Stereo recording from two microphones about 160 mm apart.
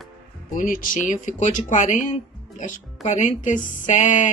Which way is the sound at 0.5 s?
60° left (ahead or behind).